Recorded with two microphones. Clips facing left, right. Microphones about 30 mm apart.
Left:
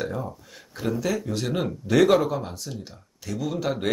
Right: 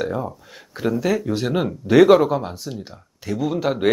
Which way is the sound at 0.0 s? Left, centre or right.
Centre.